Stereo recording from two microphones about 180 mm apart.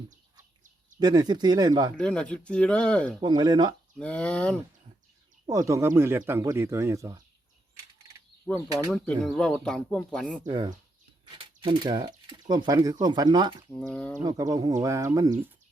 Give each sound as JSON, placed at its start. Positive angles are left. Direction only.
{"t": 0.9, "sound": "speech", "side_deg": -25}
{"t": 2.0, "sound": "speech", "side_deg": 5}
{"t": 3.2, "sound": "speech", "side_deg": -25}
{"t": 3.9, "sound": "speech", "side_deg": 5}
{"t": 5.5, "sound": "speech", "side_deg": -15}
{"t": 8.9, "sound": "speech", "side_deg": 5}
{"t": 10.4, "sound": "speech", "side_deg": -25}
{"t": 13.7, "sound": "speech", "side_deg": 5}
{"t": 14.2, "sound": "speech", "side_deg": -20}